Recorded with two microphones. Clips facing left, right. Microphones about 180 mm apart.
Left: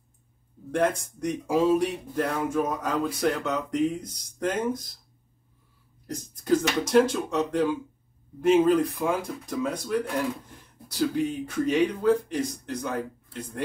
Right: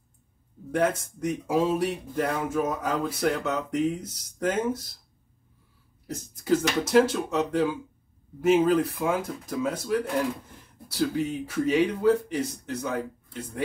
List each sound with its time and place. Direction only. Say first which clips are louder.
0.7 s speech: even; 5° right (ahead or behind)
6.0 s speech: even; 5° right (ahead or behind)